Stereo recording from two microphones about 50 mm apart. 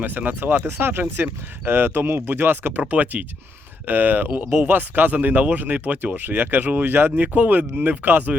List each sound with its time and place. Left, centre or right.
0.0 s speech: right
2.9 s speech: right
7.3 s speech: right